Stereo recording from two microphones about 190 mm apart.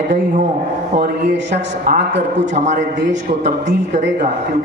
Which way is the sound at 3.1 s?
40° right (ahead or behind).